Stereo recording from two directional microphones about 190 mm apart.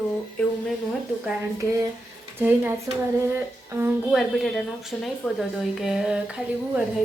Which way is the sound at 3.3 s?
15° right (ahead or behind).